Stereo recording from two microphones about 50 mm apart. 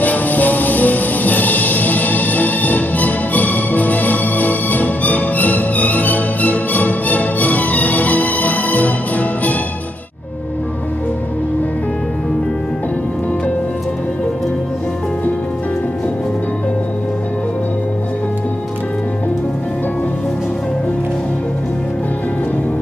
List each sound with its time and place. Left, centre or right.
0.0 s music: left